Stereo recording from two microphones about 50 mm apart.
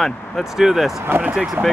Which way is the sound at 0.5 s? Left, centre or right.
Centre.